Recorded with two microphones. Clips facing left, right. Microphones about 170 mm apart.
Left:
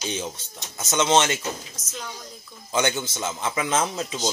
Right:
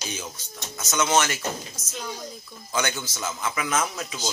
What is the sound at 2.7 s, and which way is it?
Speech, 20° left (ahead or behind).